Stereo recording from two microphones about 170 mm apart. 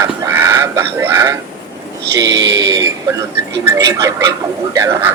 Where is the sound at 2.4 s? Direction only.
90° right.